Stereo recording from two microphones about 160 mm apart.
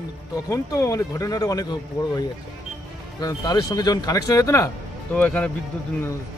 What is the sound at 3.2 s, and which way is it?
Speech, 25° left (ahead or behind).